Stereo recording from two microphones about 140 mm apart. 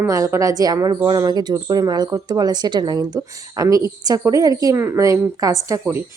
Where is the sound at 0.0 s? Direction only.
20° right (ahead or behind).